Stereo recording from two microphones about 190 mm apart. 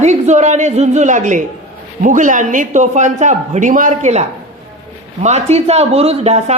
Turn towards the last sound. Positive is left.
turn(degrees=-35)  # may be behind; listen again after turning